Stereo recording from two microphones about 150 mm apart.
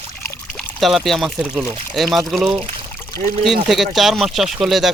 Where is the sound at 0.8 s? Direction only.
Centre (ahead or behind).